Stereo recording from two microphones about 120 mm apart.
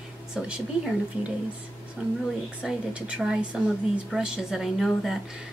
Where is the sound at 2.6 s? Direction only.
10° right (ahead or behind).